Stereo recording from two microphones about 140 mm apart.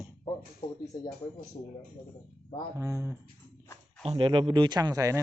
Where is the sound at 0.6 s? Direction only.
25° left (ahead or behind).